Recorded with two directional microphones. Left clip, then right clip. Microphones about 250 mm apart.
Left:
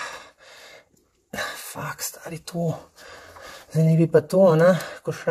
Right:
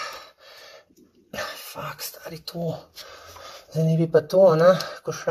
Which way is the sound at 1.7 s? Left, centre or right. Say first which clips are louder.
Left 2 dB; left.